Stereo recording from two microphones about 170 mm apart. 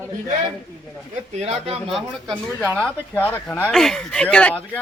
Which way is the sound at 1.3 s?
35° right (ahead or behind).